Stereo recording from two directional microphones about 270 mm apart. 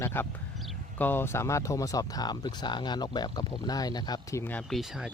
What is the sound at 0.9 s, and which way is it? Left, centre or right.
Speech, centre.